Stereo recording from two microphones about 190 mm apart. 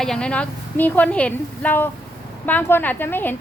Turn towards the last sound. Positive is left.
turn(degrees=10)  # may be behind; listen again after turning